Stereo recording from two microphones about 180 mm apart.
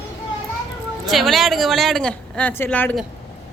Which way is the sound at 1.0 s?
Centre (ahead or behind).